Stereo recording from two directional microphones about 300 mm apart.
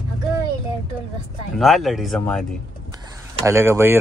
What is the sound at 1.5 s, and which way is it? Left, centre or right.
Speech, centre.